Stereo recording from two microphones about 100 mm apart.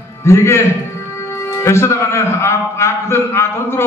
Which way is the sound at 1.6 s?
30° left (ahead or behind).